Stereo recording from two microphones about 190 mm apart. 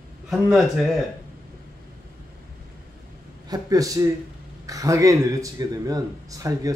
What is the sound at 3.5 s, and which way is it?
A man's voice, 20° right (ahead or behind).